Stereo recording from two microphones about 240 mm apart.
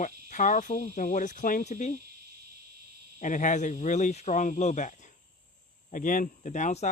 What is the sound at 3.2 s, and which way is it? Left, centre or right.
Speech, left.